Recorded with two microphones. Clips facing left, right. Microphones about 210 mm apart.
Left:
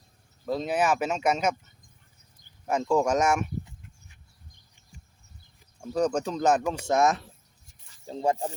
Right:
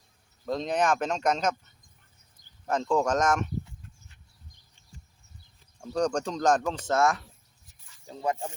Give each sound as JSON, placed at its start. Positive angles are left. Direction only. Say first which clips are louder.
{"t": 0.4, "sound": "speech", "louder": "left 1 dB", "side_deg": 5}
{"t": 2.6, "sound": "speech", "louder": "left 2 dB", "side_deg": 10}
{"t": 5.8, "sound": "speech", "louder": "left 1 dB", "side_deg": 5}